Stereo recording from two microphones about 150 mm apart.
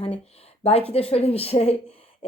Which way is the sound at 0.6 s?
40° left (ahead or behind).